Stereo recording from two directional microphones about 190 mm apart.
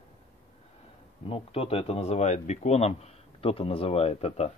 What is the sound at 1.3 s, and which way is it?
Speech, 30° left (ahead or behind).